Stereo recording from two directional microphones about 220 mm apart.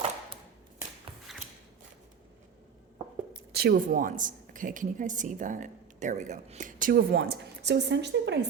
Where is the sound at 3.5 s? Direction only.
45° right (ahead or behind).